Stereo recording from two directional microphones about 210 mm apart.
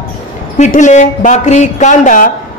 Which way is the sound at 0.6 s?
35° left (ahead or behind).